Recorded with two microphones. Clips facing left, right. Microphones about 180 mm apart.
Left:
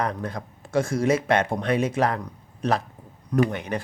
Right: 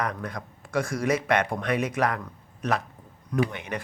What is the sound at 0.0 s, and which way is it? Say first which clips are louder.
Speech: left 3 dB; 30° left (ahead or behind).